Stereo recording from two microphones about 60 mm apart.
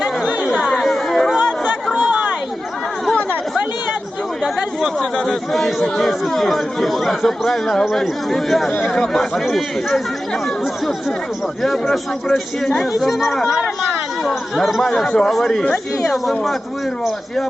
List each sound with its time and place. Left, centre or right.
0.7 s chatter: centre
1.9 s chatter: right
4.9 s a man's voice: centre
11.6 s speech: centre
15.6 s speech: centre
16.2 s speech: centre